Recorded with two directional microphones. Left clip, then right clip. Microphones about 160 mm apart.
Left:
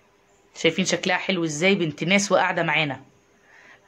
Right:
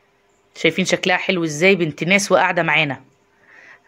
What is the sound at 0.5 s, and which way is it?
Speech, 35° right (ahead or behind).